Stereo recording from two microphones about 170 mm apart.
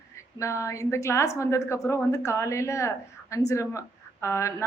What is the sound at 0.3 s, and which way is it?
A woman's voice, 20° left (ahead or behind).